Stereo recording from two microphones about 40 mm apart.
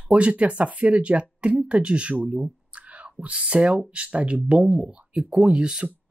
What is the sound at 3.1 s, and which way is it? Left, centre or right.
Speech, right.